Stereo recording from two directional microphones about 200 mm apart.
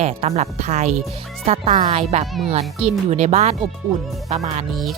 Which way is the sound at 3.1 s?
35° right (ahead or behind).